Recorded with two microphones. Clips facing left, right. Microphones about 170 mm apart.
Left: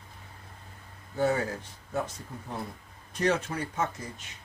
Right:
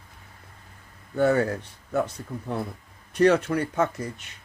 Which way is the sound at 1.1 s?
65° right (ahead or behind).